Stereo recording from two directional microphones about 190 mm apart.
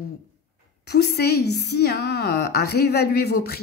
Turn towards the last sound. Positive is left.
turn(degrees=55)  # may be behind; listen again after turning